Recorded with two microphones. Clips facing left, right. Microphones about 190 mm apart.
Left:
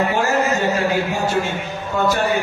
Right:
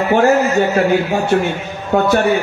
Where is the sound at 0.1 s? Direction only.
65° right (ahead or behind).